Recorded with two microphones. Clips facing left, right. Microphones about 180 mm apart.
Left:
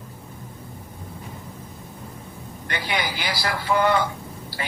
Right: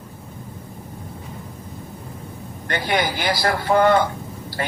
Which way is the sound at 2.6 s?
50° right (ahead or behind).